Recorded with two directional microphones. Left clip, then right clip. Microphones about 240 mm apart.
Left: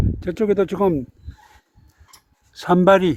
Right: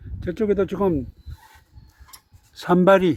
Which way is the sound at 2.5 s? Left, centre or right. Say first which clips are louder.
Left 2 dB; centre.